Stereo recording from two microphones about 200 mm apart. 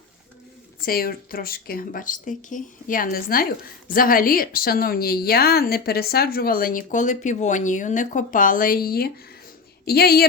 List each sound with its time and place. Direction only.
0.8 s speech: 45° left (ahead or behind)